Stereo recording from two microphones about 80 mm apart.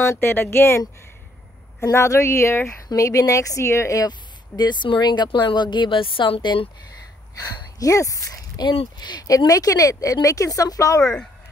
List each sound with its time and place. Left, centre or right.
0.0 s speech: left
4.6 s speech: left
7.3 s speech: left
8.6 s speech: left